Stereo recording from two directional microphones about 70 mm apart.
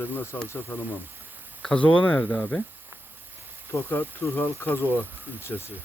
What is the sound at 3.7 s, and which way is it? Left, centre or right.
Speech, left.